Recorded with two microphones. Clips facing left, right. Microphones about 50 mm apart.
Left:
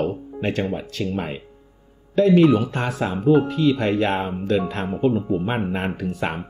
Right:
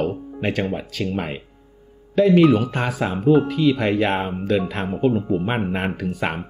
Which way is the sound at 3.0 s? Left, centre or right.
Right.